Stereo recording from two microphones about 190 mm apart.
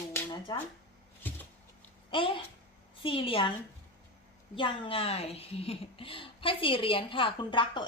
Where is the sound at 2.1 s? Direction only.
25° left (ahead or behind).